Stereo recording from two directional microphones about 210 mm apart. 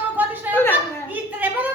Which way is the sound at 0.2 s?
10° right (ahead or behind).